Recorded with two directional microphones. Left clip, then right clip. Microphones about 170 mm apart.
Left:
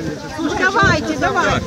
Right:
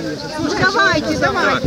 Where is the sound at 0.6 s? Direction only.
45° left (ahead or behind).